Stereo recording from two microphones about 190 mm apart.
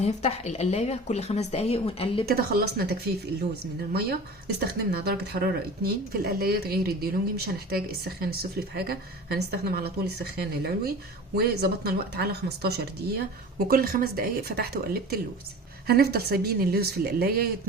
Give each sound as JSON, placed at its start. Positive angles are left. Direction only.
{"t": 0.0, "sound": "speech", "side_deg": 35}
{"t": 2.2, "sound": "a woman's voice", "side_deg": -50}
{"t": 15.9, "sound": "a woman's voice", "side_deg": -55}